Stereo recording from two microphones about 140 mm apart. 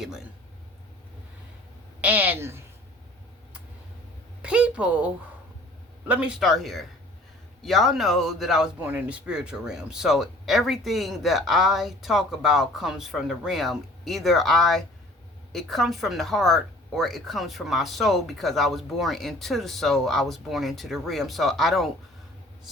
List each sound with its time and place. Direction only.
2.0 s a woman's voice: 10° right (ahead or behind)
4.4 s a woman's voice: 10° right (ahead or behind)